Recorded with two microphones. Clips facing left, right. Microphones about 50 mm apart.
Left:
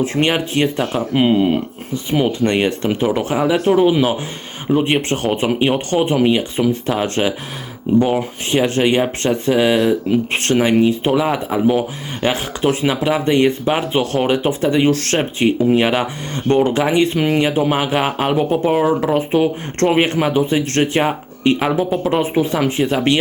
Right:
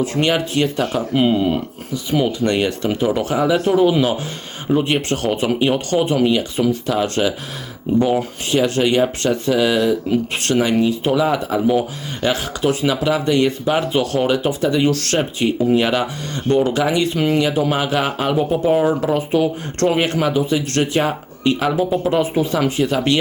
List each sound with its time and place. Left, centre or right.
0.0 s speech: left
8.4 s speech: left
18.7 s speech: centre
19.1 s speech: left